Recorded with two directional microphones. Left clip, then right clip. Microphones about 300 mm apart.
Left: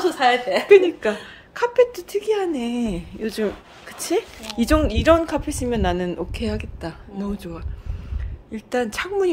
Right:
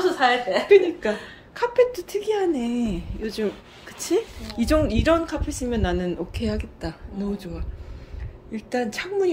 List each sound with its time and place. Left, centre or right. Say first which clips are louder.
0.2 s a woman's voice: left 4 dB; left
0.7 s a woman's voice: left 3 dB; centre